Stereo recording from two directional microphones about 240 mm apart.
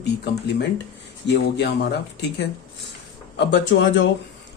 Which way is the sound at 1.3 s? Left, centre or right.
Left.